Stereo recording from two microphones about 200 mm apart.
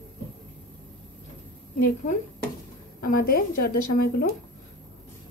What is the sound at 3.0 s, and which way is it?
Speech, 45° left (ahead or behind).